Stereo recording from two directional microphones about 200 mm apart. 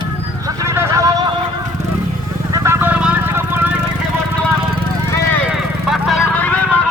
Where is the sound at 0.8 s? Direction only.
15° right (ahead or behind).